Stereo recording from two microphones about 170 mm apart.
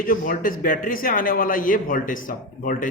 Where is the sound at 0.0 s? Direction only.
55° left (ahead or behind).